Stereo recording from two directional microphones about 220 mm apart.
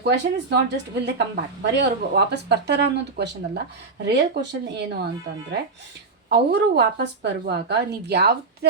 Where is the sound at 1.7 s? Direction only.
50° right (ahead or behind).